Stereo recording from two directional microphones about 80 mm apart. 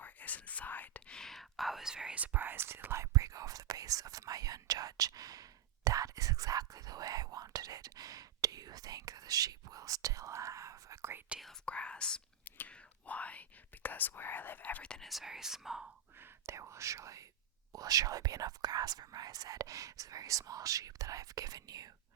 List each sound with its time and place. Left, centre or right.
0.0 s whispering: left; by 11.2 s right
11.6 s speech: centre
12.5 s whispering: centre
13.8 s speech: left
15.0 s speech: centre
16.2 s speech: right